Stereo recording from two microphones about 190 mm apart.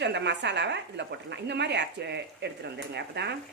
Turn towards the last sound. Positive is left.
turn(degrees=-60)  # may be behind; listen again after turning